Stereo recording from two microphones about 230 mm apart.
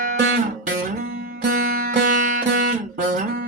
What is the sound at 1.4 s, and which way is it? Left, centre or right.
Music, right.